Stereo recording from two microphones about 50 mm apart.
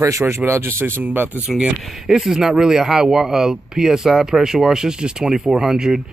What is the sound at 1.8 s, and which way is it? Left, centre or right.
Speech, centre.